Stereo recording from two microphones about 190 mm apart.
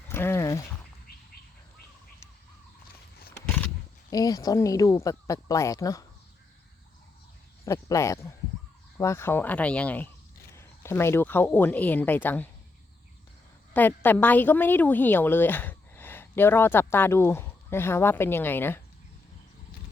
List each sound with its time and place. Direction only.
0.1 s a sound: 15° left (ahead or behind)
4.1 s a woman's voice: 20° left (ahead or behind)
7.6 s a woman's voice: 15° left (ahead or behind)
13.7 s a woman's voice: 10° left (ahead or behind)